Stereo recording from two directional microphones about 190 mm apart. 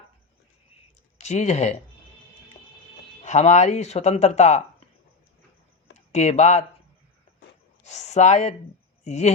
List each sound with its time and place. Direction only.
1.2 s speech: 35° left (ahead or behind)
3.2 s speech: 35° left (ahead or behind)
6.1 s speech: 35° left (ahead or behind)
7.9 s speech: 35° left (ahead or behind)